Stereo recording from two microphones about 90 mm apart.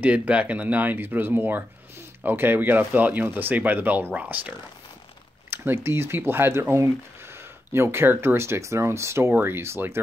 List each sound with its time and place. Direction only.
0.0 s speech: 15° right (ahead or behind)